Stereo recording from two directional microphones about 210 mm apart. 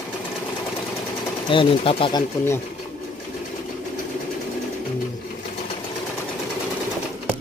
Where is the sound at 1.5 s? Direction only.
25° left (ahead or behind).